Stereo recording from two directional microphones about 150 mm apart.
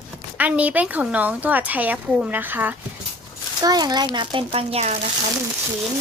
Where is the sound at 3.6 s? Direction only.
25° right (ahead or behind); by 5.0 s 45° right (ahead or behind).